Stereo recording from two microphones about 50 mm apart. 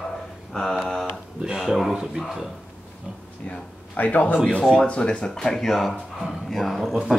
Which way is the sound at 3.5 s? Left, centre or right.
Left.